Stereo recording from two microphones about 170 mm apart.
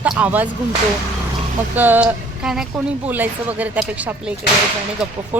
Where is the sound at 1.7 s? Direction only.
10° right (ahead or behind).